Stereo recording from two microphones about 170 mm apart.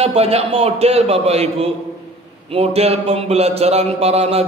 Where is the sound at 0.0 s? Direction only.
35° right (ahead or behind).